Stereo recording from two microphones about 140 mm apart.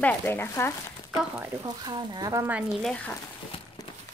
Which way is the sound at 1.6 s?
30° right (ahead or behind).